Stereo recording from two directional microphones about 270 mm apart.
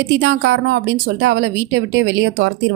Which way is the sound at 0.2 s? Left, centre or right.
Right.